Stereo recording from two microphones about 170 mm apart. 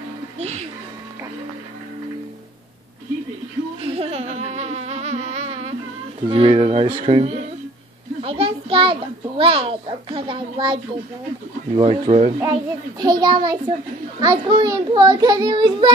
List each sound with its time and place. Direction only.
0.4 s music: 40° right (ahead or behind)
3.8 s insect: 35° right (ahead or behind)
6.2 s a child's voice: 35° right (ahead or behind)
8.2 s a sound: 35° right (ahead or behind)
9.4 s a child's voice: 30° right (ahead or behind)
13.0 s a child's voice: 25° right (ahead or behind)